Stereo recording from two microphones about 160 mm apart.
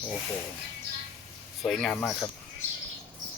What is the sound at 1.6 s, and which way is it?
Speech, centre (ahead or behind).